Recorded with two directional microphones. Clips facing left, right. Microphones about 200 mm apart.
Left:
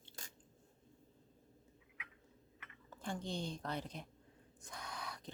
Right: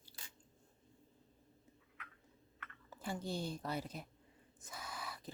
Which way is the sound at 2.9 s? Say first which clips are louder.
Right 1 dB; 5° right (ahead or behind).